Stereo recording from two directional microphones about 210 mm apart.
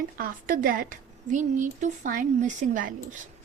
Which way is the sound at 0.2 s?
40° right (ahead or behind).